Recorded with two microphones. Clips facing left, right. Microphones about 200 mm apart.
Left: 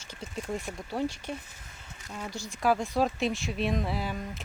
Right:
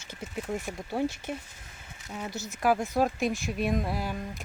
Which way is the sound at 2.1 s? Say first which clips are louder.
Right 2 dB; 10° right (ahead or behind).